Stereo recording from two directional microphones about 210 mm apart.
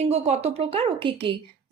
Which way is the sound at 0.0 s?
30° right (ahead or behind).